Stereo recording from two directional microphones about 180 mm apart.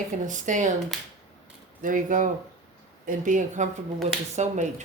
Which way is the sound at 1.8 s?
50° right (ahead or behind).